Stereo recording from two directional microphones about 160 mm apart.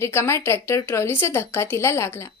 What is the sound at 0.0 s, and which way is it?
Speech, 15° left (ahead or behind).